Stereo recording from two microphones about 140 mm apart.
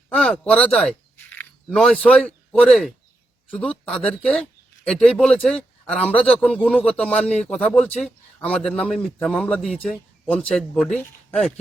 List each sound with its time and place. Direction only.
0.1 s a man's voice: 5° left (ahead or behind)